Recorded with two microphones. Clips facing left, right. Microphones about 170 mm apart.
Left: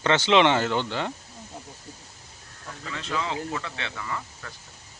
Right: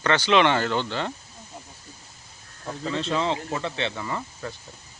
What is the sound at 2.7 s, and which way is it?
Speech, 25° right (ahead or behind).